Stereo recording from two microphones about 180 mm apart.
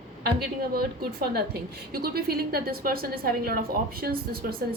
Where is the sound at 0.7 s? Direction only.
60° right (ahead or behind).